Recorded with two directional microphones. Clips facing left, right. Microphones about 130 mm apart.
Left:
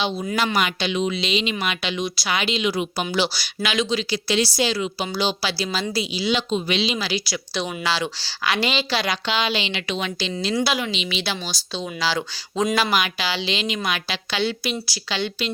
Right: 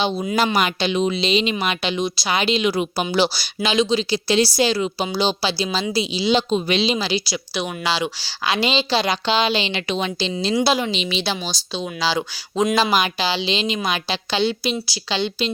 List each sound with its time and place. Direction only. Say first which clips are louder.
0.5 s a woman's voice: right 3 dB; 35° right (ahead or behind)
6.5 s speech: right 3 dB; 40° right (ahead or behind)
7.5 s a woman's voice: right 1 dB; 15° right (ahead or behind)
11.7 s a woman's voice: right 2 dB; 15° right (ahead or behind)